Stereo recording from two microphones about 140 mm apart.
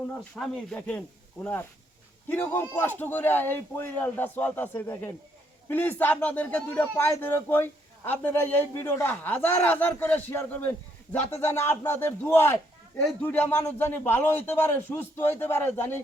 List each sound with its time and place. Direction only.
0.3 s speech: 5° left (ahead or behind)